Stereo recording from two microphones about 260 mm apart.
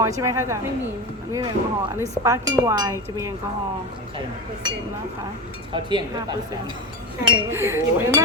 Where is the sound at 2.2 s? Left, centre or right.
Centre.